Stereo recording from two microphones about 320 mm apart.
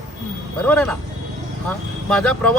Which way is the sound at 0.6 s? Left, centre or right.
Centre.